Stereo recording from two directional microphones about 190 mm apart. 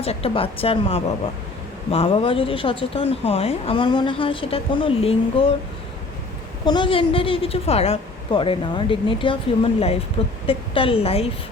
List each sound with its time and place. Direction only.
0.0 s speech: 30° left (ahead or behind)
6.7 s speech: 25° left (ahead or behind)
10.4 s speech: 30° left (ahead or behind)